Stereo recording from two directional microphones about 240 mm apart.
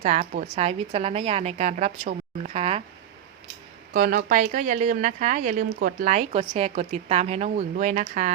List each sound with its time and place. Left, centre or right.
0.0 s a woman's voice: right
3.9 s a woman's voice: right